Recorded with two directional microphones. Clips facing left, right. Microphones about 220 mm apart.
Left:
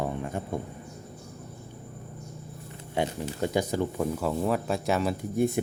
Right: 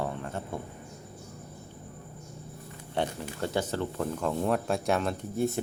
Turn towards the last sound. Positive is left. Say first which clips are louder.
# left 3 dB
turn(degrees=15)  # may be behind; listen again after turning